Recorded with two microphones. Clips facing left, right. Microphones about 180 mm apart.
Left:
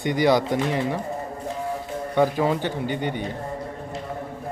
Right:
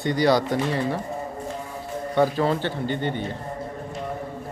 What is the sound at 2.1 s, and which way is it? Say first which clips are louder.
Speech: even; 15° left (ahead or behind).